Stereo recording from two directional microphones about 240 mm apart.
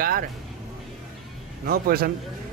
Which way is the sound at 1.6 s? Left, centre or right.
Right.